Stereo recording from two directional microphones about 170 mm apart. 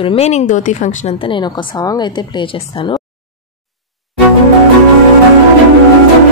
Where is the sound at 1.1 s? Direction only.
30° left (ahead or behind).